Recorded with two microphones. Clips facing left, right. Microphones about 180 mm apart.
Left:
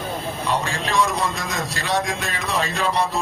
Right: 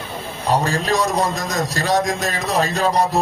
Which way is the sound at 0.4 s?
40° right (ahead or behind).